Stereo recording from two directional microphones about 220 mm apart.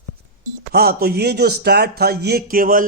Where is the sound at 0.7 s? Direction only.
45° right (ahead or behind).